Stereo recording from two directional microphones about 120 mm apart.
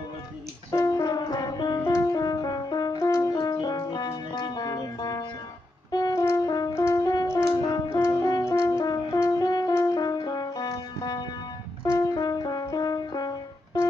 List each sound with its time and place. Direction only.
0.7 s music: 30° left (ahead or behind)